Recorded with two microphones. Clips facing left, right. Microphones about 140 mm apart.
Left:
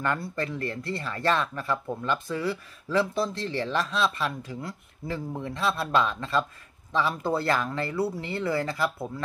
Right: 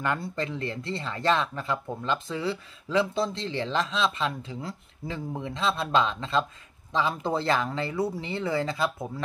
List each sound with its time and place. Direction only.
0.0 s speech: 20° right (ahead or behind)